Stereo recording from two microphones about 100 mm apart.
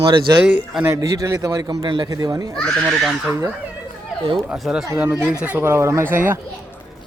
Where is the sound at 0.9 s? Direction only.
35° right (ahead or behind); by 2.1 s 50° right (ahead or behind).